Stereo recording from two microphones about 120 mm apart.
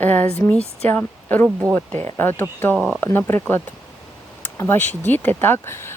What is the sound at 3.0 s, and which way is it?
Speech, 20° left (ahead or behind).